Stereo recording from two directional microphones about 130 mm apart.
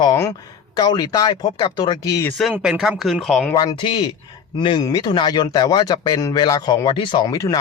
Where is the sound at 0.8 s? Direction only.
30° left (ahead or behind).